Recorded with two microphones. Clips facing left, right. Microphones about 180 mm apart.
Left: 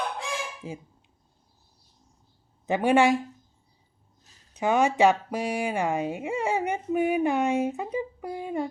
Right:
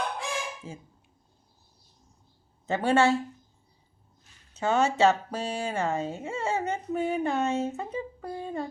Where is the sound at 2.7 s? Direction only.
15° left (ahead or behind).